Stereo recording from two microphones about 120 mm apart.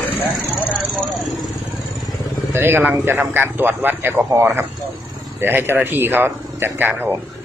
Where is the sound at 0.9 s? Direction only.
Centre (ahead or behind).